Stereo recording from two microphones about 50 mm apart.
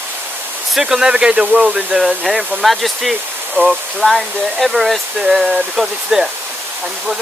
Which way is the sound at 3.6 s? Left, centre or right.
Right.